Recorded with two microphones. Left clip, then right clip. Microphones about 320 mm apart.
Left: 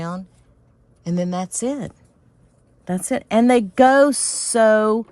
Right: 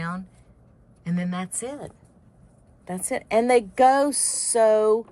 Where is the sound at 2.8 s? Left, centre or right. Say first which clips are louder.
Left 5 dB; left.